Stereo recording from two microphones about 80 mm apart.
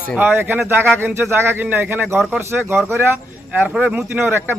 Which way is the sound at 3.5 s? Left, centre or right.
Centre.